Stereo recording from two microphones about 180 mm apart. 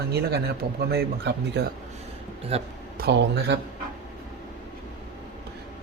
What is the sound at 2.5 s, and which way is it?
Speech, 35° right (ahead or behind).